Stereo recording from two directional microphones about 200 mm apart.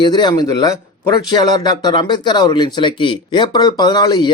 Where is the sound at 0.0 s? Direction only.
20° left (ahead or behind).